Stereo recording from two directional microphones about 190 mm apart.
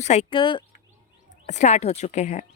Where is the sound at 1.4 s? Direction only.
40° left (ahead or behind).